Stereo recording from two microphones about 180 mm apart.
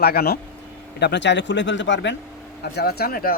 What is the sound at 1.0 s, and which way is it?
Speech, 75° left (ahead or behind).